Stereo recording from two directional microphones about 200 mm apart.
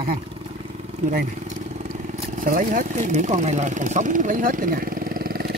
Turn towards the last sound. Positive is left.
turn(degrees=-50)  # may be behind; listen again after turning